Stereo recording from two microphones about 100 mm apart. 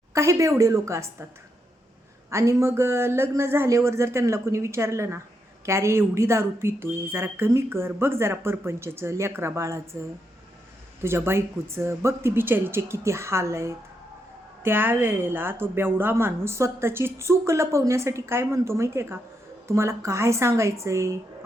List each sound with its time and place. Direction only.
0.1 s a woman's voice: 30° right (ahead or behind)
2.3 s a woman's voice: 30° right (ahead or behind)
11.0 s a woman's voice: 25° right (ahead or behind)